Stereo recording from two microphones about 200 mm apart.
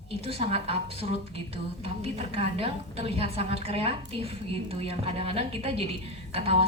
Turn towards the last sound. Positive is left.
turn(degrees=-30)  # may be behind; listen again after turning